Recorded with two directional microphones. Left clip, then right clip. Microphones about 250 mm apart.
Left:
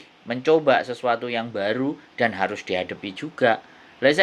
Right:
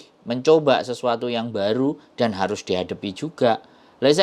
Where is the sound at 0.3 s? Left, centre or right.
Right.